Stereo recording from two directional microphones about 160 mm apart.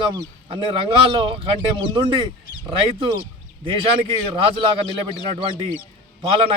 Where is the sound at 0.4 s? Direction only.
35° right (ahead or behind).